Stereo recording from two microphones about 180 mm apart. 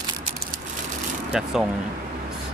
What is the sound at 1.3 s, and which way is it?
Speech, centre (ahead or behind).